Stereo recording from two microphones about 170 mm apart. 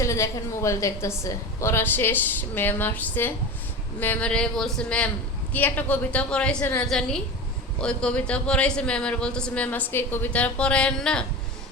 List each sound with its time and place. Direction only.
0.0 s a man's voice: 20° left (ahead or behind)